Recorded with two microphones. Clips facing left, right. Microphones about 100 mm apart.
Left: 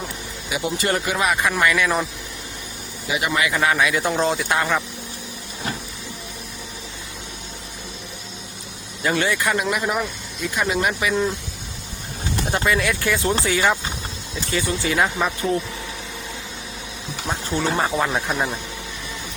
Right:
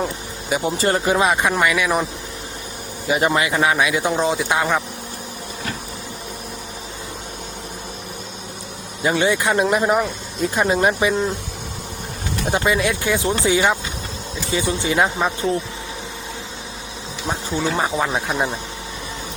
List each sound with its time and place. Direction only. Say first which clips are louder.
0.5 s speech: right 3 dB; 35° right (ahead or behind); by 2.0 s 15° right (ahead or behind)
3.1 s speech: right 4 dB; 35° right (ahead or behind); by 4.8 s 15° right (ahead or behind)
9.0 s speech: right 3 dB; 20° right (ahead or behind)
9.6 s speech: right 5 dB; 35° right (ahead or behind)
12.5 s speech: right 2 dB; 20° right (ahead or behind)
14.5 s speech: right 2 dB; 20° right (ahead or behind)
17.2 s speech: right 1 dB; 10° right (ahead or behind)